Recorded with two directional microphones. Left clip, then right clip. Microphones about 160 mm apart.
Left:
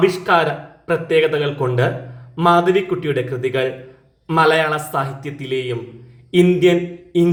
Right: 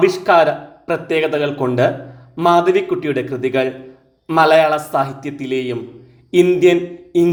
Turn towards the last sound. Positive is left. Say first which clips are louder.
# right 2 dB
turn(degrees=-35)  # may be behind; listen again after turning